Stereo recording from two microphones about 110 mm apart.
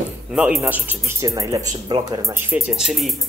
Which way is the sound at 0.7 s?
20° right (ahead or behind).